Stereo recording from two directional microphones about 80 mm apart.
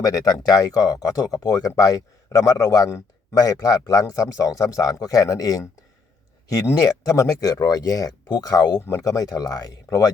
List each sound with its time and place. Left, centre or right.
0.0 s speech: left